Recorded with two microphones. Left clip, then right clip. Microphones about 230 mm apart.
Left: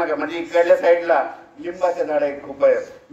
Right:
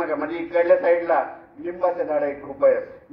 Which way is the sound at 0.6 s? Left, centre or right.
Left.